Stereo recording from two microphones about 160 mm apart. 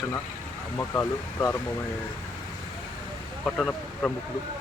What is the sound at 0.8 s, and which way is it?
Speech, 15° left (ahead or behind).